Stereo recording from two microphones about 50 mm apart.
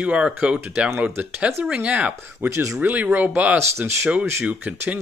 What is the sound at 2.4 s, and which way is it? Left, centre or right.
Speech, right.